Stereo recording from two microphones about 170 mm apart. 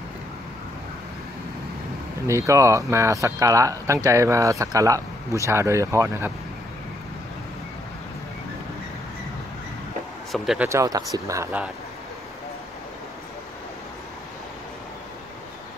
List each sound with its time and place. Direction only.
2.2 s speech: 15° right (ahead or behind)
10.3 s speech: centre (ahead or behind)
10.7 s speech: 20° right (ahead or behind)